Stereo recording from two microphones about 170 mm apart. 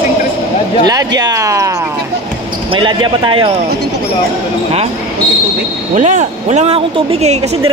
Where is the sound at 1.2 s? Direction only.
20° right (ahead or behind).